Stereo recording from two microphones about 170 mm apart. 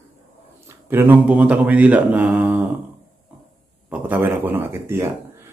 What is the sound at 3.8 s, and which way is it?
Speech, 10° right (ahead or behind).